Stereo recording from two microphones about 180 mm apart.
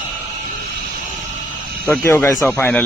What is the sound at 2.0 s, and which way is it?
Speech, 15° left (ahead or behind).